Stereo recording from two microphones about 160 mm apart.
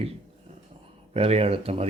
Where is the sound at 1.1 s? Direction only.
40° right (ahead or behind).